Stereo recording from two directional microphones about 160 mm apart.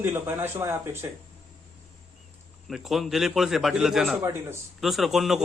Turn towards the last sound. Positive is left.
turn(degrees=0)  # may be behind; listen again after turning